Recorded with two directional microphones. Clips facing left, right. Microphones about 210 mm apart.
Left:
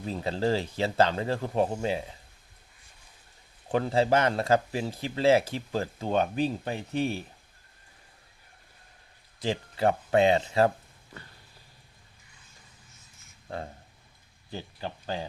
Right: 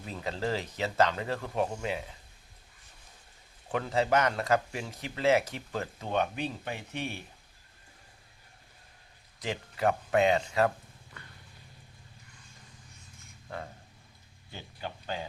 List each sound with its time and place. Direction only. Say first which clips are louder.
0.0 s speech: left 5 dB; 30° left (ahead or behind)
3.7 s speech: left 4 dB; 30° left (ahead or behind)
9.4 s speech: left 4 dB; 30° left (ahead or behind)
13.5 s speech: left 4 dB; 30° left (ahead or behind)